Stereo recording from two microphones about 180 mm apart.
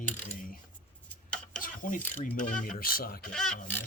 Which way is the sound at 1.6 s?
45° left (ahead or behind).